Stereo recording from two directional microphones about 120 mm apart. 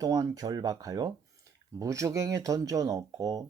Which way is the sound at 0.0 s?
30° right (ahead or behind).